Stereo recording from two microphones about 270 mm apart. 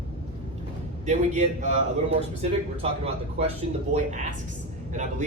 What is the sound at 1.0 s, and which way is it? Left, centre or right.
Speech, right.